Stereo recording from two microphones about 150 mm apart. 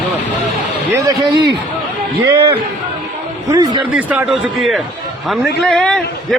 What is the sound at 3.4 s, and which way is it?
Speech, 25° right (ahead or behind).